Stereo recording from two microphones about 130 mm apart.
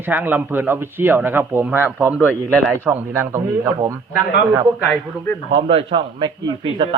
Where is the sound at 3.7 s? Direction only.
30° right (ahead or behind).